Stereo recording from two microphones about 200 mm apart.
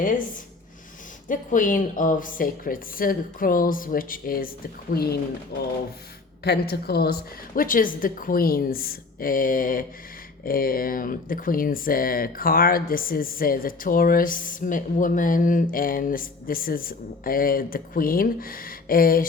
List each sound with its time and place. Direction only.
1.3 s speech: 40° left (ahead or behind)
6.4 s speech: 55° left (ahead or behind)